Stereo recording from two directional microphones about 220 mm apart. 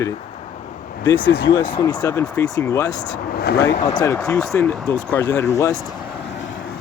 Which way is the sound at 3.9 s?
15° left (ahead or behind).